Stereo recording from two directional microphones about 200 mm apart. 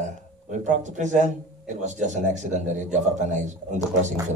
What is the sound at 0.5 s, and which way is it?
A man's voice, 40° right (ahead or behind).